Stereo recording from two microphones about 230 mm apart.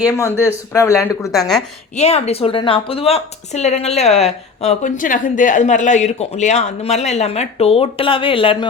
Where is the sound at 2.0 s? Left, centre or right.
Left.